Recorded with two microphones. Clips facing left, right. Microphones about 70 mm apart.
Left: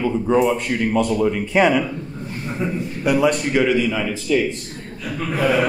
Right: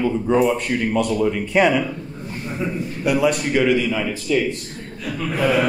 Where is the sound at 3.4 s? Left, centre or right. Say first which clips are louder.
Even; centre.